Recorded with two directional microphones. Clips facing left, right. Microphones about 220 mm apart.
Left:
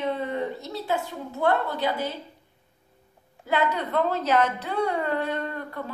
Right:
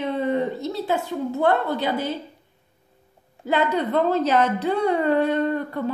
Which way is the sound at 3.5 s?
25° right (ahead or behind).